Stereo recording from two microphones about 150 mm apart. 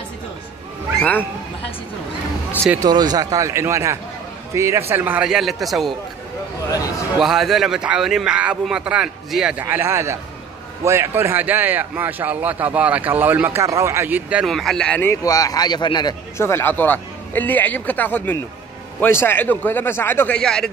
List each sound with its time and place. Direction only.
2.8 s a man's voice: 25° right (ahead or behind); by 5.9 s centre (ahead or behind)
7.2 s a man's voice: centre (ahead or behind)
14.4 s a man's voice: centre (ahead or behind)
15.2 s speech: 25° left (ahead or behind)
16.3 s a man's voice: 15° left (ahead or behind)